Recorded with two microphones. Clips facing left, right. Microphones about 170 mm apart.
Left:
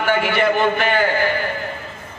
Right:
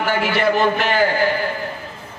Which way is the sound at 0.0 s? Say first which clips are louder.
Left 1 dB; 55° left (ahead or behind).